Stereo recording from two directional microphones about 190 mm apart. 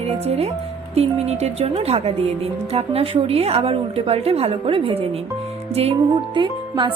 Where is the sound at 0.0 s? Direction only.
35° right (ahead or behind).